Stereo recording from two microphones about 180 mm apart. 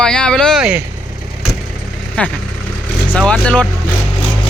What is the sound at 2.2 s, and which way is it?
Speech, 5° left (ahead or behind).